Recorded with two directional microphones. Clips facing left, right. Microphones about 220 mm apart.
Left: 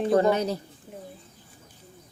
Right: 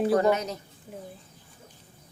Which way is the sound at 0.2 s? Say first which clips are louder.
Left 2 dB; 30° left (ahead or behind).